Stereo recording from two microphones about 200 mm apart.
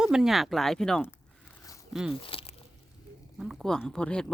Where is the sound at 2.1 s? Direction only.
25° left (ahead or behind).